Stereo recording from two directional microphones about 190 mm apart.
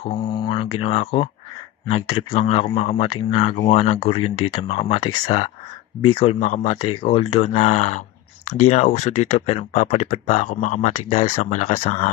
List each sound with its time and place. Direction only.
0.0 s speech: 25° left (ahead or behind)
6.8 s speech: 25° left (ahead or behind)